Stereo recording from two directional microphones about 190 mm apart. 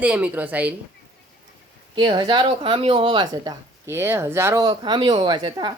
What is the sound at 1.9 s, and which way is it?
A woman's voice, 25° right (ahead or behind).